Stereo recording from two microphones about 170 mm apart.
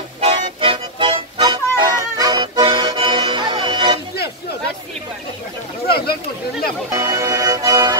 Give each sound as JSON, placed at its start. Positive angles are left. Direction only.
{"t": 0.2, "sound": "music", "side_deg": -35}
{"t": 5.9, "sound": "a sound", "side_deg": 65}
{"t": 6.9, "sound": "music", "side_deg": -20}